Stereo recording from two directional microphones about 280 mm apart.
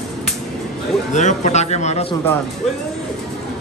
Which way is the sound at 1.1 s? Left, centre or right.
Left.